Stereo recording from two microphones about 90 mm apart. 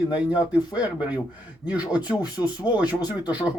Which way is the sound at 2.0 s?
50° left (ahead or behind).